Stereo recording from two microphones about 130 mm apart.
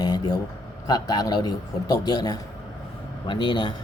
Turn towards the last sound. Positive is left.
turn(degrees=35)  # may be behind; listen again after turning